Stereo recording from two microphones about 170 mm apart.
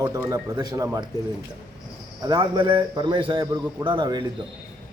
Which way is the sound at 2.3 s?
25° right (ahead or behind).